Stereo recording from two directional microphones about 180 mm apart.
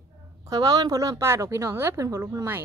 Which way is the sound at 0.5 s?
20° right (ahead or behind).